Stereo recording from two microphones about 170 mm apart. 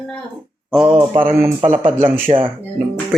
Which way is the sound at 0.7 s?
5° right (ahead or behind).